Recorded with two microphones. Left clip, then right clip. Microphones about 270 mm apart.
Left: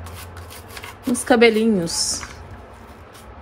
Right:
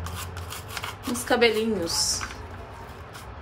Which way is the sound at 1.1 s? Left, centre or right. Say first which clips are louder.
Left 7 dB; centre.